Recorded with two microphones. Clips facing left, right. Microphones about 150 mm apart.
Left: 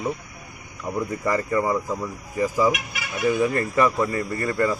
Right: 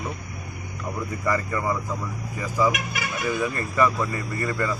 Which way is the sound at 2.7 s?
50° right (ahead or behind).